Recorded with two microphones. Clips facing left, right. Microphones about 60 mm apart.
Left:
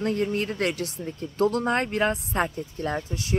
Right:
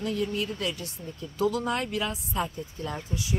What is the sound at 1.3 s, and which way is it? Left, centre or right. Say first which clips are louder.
Speech: left 4 dB; left.